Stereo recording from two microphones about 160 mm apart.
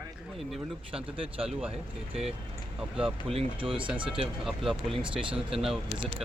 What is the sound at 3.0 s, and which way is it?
Speech, 5° right (ahead or behind).